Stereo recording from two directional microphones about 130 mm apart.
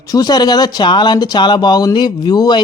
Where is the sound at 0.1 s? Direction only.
30° left (ahead or behind).